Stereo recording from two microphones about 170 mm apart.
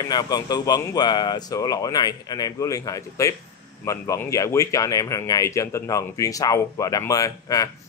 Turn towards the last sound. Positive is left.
turn(degrees=20)  # may be behind; listen again after turning